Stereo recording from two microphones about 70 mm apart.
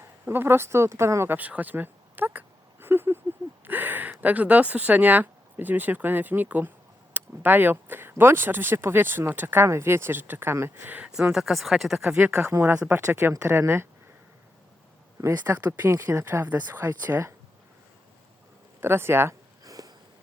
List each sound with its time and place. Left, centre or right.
0.3 s speech: right
1.4 s speech: right
2.8 s a sound: right
4.2 s speech: right
9.6 s speech: right
10.8 s speech: right
11.1 s speech: centre
12.2 s speech: centre
12.9 s speech: right
15.2 s speech: right
16.5 s speech: right
16.8 s speech: right
18.8 s speech: right
19.6 s sniff: right